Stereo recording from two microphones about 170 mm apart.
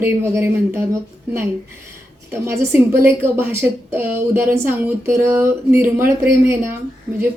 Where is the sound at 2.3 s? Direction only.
15° right (ahead or behind).